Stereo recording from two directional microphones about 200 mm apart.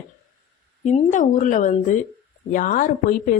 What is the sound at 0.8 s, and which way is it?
Speech, 35° left (ahead or behind).